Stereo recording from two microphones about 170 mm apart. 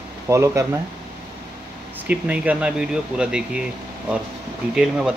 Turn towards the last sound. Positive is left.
turn(degrees=-5)  # may be behind; listen again after turning